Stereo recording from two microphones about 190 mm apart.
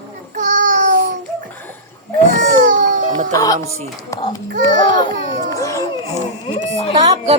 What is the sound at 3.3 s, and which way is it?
A woman's voice, 20° left (ahead or behind).